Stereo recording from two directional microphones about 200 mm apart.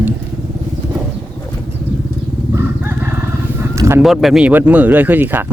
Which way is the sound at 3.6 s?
15° right (ahead or behind).